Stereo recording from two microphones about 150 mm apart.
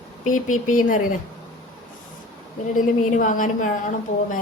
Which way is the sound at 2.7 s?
60° left (ahead or behind).